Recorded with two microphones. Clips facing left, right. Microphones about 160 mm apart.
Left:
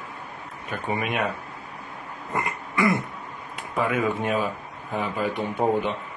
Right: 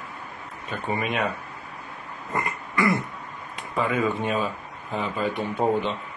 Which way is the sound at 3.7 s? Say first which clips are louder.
Even; 10° left (ahead or behind).